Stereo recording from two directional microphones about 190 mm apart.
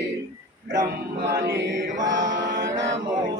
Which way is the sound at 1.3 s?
60° right (ahead or behind).